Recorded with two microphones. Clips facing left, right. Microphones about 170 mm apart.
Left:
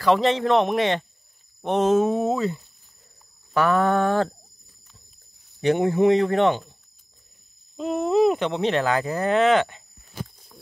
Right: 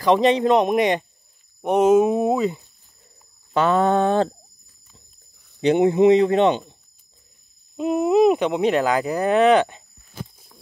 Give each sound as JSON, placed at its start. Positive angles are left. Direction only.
{"t": 0.0, "sound": "a man's voice", "side_deg": -15}
{"t": 5.6, "sound": "speech", "side_deg": -20}
{"t": 7.7, "sound": "speech", "side_deg": -10}